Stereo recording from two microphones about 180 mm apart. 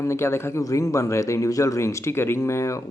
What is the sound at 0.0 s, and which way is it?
Speech, 15° left (ahead or behind).